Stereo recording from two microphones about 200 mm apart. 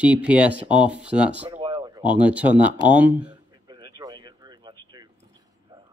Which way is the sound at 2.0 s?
5° right (ahead or behind).